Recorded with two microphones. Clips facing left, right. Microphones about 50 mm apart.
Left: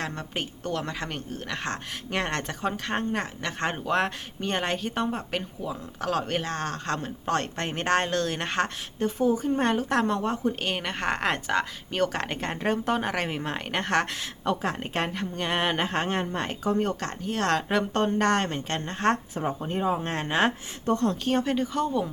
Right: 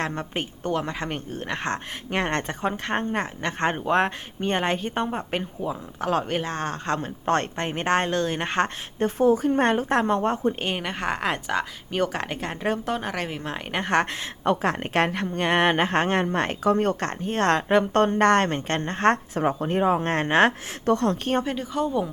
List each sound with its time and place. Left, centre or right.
0.0 s speech: right
9.0 s a woman's voice: right
9.9 s speech: right
10.2 s a woman's voice: right
10.8 s speech: centre
13.8 s speech: right
14.6 s speech: right
20.8 s speech: right
21.4 s speech: centre